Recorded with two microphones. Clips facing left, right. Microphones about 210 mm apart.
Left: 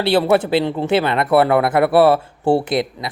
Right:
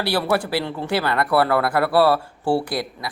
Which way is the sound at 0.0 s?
25° left (ahead or behind).